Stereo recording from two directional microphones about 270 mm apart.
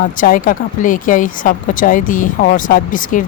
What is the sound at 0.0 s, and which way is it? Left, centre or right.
Speech, left.